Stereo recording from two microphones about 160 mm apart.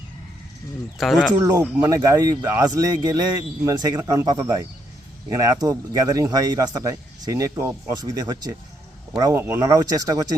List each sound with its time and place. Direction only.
0.9 s speech: centre (ahead or behind)
1.4 s speech: 20° right (ahead or behind)